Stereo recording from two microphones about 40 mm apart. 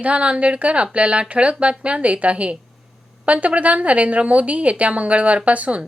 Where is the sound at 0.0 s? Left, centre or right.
Right.